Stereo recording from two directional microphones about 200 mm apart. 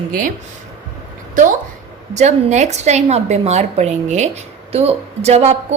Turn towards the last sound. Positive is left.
turn(degrees=-30)  # may be behind; listen again after turning